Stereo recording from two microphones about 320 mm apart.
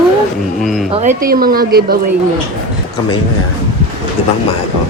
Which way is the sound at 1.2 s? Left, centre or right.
Right.